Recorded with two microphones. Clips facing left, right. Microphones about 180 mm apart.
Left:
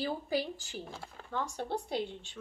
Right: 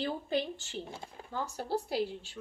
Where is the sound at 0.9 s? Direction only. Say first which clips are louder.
Right 1 dB; 20° right (ahead or behind).